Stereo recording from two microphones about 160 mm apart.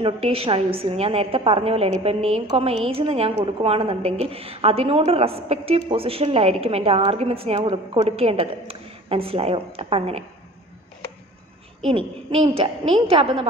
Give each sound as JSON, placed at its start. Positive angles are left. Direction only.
{"t": 0.0, "sound": "a woman's voice", "side_deg": -35}
{"t": 11.8, "sound": "a woman's voice", "side_deg": -35}